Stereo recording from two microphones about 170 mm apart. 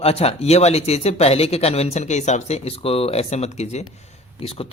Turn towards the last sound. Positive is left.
turn(degrees=40)  # may be behind; listen again after turning